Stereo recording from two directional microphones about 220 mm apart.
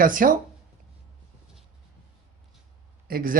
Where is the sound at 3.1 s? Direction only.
40° right (ahead or behind).